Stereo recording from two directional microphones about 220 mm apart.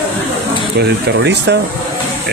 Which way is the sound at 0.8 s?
50° right (ahead or behind).